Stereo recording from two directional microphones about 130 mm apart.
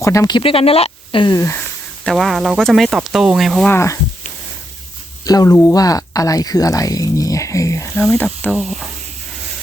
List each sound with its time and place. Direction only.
0.0 s speech: 25° left (ahead or behind)
0.3 s speech: 45° left (ahead or behind)
1.3 s speech: 25° left (ahead or behind)
2.0 s speech: centre (ahead or behind)
3.7 s speech: 20° left (ahead or behind)
5.2 s speech: 30° left (ahead or behind)
8.4 s speech: centre (ahead or behind)